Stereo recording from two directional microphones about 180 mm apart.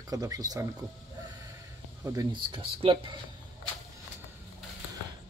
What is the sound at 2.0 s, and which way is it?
Speech, 20° right (ahead or behind).